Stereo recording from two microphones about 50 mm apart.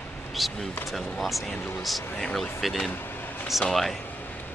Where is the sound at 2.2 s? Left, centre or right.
Centre.